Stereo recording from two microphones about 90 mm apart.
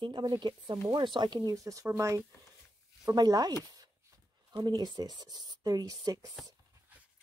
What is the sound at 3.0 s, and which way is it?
Speech, 45° right (ahead or behind).